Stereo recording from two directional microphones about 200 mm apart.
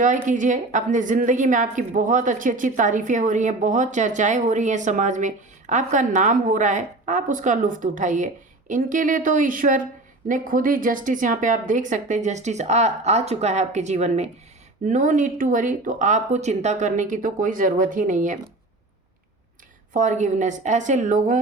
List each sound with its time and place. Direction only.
0.0 s a woman's voice: 40° right (ahead or behind)
19.9 s a woman's voice: 40° right (ahead or behind)